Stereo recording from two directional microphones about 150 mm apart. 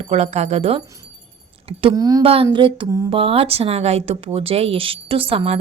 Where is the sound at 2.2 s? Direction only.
35° right (ahead or behind).